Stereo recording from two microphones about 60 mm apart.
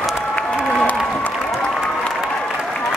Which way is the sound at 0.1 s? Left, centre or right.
Left.